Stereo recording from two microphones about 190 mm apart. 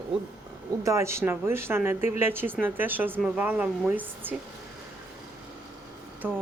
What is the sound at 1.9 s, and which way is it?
Speech, 35° left (ahead or behind).